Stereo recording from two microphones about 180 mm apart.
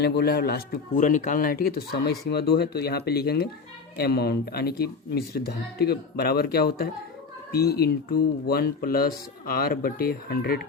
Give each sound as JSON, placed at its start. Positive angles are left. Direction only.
{"t": 0.0, "sound": "speech", "side_deg": 60}
{"t": 0.9, "sound": "speech", "side_deg": 45}